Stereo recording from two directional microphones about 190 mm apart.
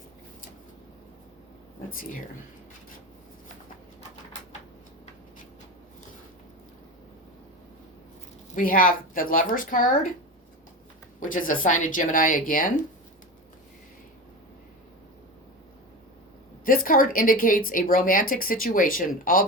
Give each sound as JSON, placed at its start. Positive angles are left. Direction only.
{"t": 8.5, "sound": "a woman's voice", "side_deg": 50}
{"t": 11.2, "sound": "a woman's voice", "side_deg": 45}
{"t": 16.6, "sound": "a woman's voice", "side_deg": 45}